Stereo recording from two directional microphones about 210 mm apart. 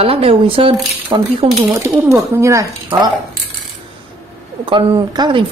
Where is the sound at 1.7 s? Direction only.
15° right (ahead or behind).